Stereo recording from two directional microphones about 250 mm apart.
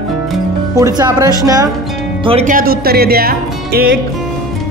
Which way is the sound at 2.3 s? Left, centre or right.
Right.